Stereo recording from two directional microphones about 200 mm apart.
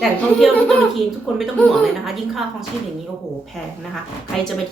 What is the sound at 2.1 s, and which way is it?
Speech, centre (ahead or behind).